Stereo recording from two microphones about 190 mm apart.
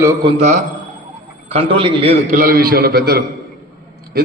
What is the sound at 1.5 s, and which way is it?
Speech, 30° right (ahead or behind).